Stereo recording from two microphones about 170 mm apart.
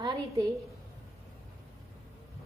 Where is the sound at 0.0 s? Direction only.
25° right (ahead or behind).